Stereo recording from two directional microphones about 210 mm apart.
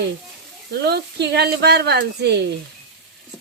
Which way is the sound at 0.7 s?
50° right (ahead or behind).